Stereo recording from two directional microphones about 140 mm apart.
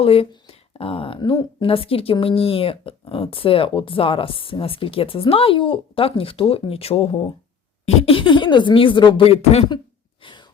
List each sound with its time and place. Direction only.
0.0 s speech: 45° left (ahead or behind)